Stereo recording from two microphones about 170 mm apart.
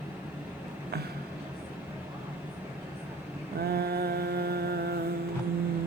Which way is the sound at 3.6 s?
65° right (ahead or behind).